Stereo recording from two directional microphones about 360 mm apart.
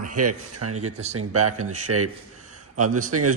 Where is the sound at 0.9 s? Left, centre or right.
Centre.